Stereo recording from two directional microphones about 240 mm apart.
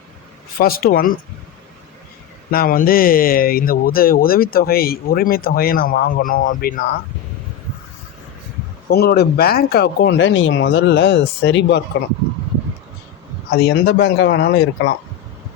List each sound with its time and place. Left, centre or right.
0.6 s speech: left
2.5 s speech: left
8.9 s speech: left
13.5 s speech: left